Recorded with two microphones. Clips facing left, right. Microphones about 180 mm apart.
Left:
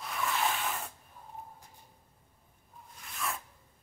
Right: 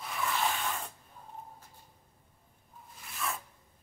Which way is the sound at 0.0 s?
Centre (ahead or behind).